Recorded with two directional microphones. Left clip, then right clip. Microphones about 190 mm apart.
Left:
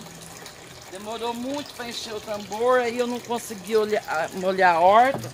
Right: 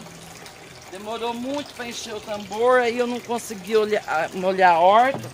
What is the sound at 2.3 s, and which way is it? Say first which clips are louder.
Speech: right 3 dB; 15° right (ahead or behind).